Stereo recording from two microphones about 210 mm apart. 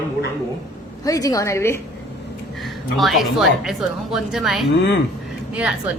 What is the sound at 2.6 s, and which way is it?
A woman's voice, centre (ahead or behind).